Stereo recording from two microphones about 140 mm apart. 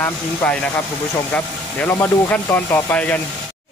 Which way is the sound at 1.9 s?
15° left (ahead or behind).